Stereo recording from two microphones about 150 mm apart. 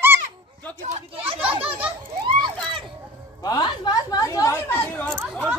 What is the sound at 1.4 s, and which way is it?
Children playing, 10° right (ahead or behind).